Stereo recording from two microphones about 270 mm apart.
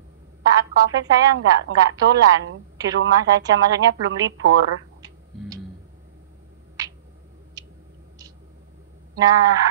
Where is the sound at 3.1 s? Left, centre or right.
Centre.